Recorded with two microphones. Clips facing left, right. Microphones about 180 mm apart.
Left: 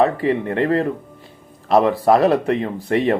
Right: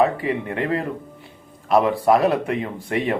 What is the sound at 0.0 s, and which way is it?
Speech, 35° left (ahead or behind).